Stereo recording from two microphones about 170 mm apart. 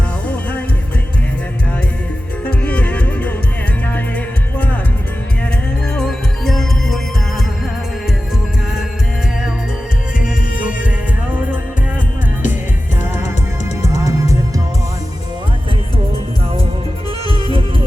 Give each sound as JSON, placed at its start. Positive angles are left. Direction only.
{"t": 2.4, "sound": "music", "side_deg": 5}
{"t": 4.5, "sound": "music", "side_deg": 10}
{"t": 5.9, "sound": "music", "side_deg": 5}
{"t": 10.2, "sound": "music", "side_deg": -5}
{"t": 13.0, "sound": "music", "side_deg": -15}
{"t": 17.4, "sound": "music", "side_deg": -30}